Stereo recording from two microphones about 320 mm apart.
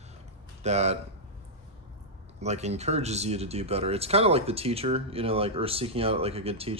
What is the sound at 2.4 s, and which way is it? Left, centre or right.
Speech, right.